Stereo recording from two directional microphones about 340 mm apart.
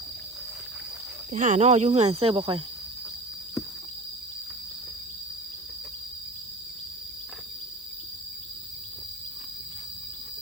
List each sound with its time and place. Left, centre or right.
1.3 s speech: right